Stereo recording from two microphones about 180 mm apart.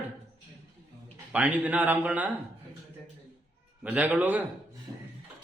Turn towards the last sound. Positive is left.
turn(degrees=-5)  # may be behind; listen again after turning